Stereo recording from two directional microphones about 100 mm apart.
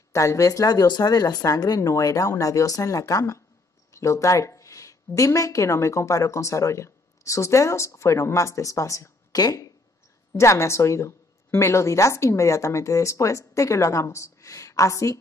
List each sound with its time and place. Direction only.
0.1 s a woman's voice: 30° left (ahead or behind)